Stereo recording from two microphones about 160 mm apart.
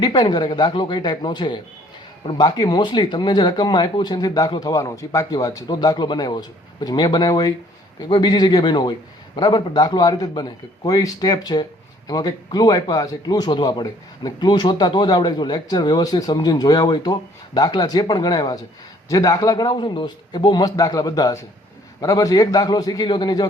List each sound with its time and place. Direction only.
0.0 s a man's voice: 25° left (ahead or behind)